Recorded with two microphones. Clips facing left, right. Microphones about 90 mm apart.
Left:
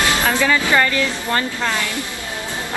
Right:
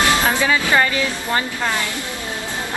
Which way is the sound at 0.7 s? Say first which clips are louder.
Even; 20° right (ahead or behind).